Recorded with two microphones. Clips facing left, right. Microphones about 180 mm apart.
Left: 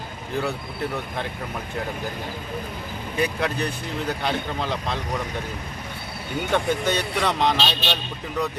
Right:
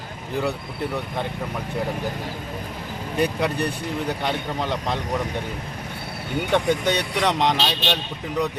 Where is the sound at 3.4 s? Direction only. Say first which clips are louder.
Right 2 dB; 15° right (ahead or behind).